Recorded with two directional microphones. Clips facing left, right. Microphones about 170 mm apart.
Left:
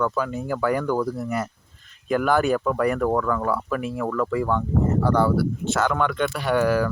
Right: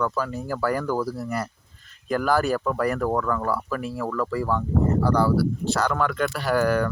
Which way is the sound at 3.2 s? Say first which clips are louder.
Left 2 dB; 20° left (ahead or behind).